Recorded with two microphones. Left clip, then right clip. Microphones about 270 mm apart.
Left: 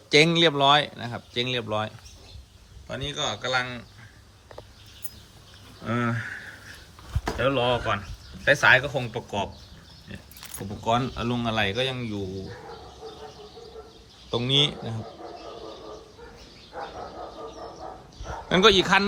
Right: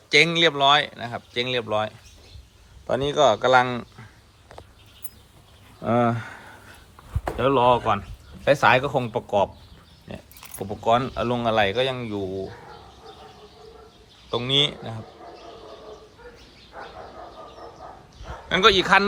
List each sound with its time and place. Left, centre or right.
0.1 s speech: centre
2.9 s a man's voice: centre
3.2 s speech: centre
5.8 s speech: centre
7.3 s speech: centre
10.8 s speech: centre
14.3 s speech: centre
18.2 s speech: centre